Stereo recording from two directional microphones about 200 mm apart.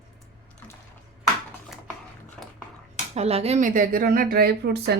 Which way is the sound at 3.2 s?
30° right (ahead or behind).